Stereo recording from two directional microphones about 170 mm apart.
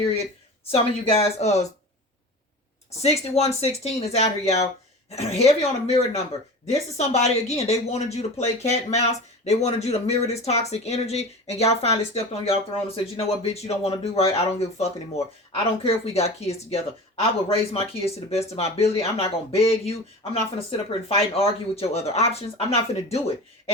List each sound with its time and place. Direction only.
0.6 s speech: 35° left (ahead or behind)
3.0 s speech: 40° left (ahead or behind)